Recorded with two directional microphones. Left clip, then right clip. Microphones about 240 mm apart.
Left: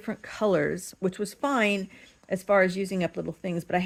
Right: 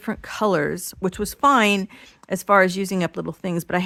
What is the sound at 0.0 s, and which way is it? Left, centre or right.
Speech, right.